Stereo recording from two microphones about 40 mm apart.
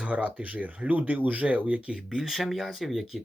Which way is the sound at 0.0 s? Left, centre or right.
Right.